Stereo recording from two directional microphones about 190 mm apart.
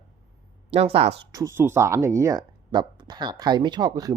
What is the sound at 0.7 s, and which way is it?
Speech, 30° right (ahead or behind).